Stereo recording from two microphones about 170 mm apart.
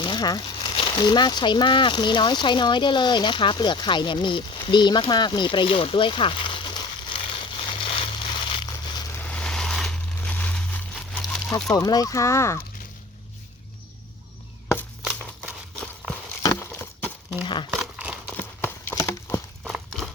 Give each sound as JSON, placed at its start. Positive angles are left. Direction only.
{"t": 0.0, "sound": "speech", "side_deg": 25}
{"t": 8.4, "sound": "a sound", "side_deg": 30}
{"t": 9.1, "sound": "a sound", "side_deg": 10}
{"t": 11.7, "sound": "speech", "side_deg": 20}
{"t": 15.0, "sound": "a sound", "side_deg": -5}
{"t": 16.4, "sound": "clip-clop", "side_deg": 15}
{"t": 17.7, "sound": "crumpling", "side_deg": -5}
{"t": 18.3, "sound": "clip-clop", "side_deg": 10}
{"t": 19.6, "sound": "horse", "side_deg": 0}